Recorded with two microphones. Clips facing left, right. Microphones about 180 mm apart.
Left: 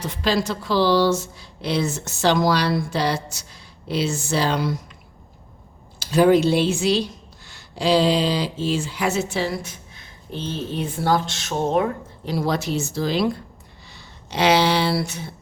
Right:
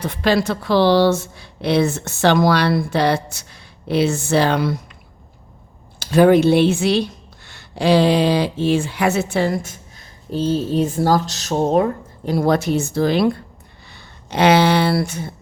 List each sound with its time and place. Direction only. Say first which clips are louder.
0.0 s a woman's voice: right 4 dB; 60° right (ahead or behind)
6.0 s speech: right 3 dB; 55° right (ahead or behind)
10.3 s speech: right 9 dB; 40° right (ahead or behind)